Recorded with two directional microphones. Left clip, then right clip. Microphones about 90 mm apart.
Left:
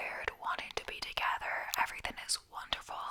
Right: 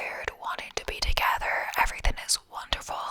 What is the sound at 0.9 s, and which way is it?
Whispering, 35° right (ahead or behind).